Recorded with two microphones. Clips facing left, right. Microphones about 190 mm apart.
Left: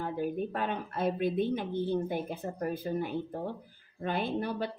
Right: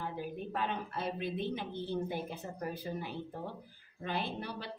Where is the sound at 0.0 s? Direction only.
50° left (ahead or behind).